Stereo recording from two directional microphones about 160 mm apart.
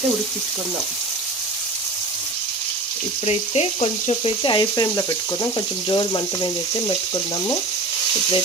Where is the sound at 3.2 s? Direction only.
40° left (ahead or behind).